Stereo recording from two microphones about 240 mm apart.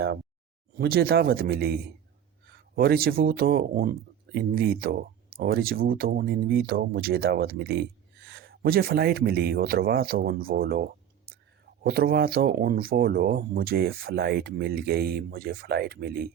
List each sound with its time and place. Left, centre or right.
0.8 s speech: right